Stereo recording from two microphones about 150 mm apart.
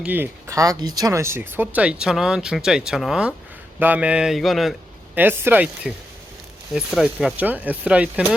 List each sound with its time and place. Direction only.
0.0 s speech: 10° right (ahead or behind)
5.1 s speech: 15° right (ahead or behind)